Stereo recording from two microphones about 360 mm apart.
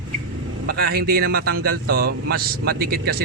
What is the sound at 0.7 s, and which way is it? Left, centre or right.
Speech, right.